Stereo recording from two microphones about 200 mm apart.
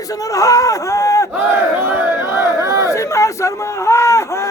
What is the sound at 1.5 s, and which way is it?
Battle cry, 10° right (ahead or behind).